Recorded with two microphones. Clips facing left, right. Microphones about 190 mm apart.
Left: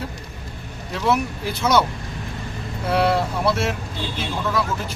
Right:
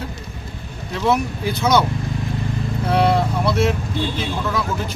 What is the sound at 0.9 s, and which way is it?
Speech, 5° left (ahead or behind).